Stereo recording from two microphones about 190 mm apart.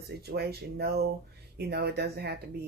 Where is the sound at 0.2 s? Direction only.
55° right (ahead or behind).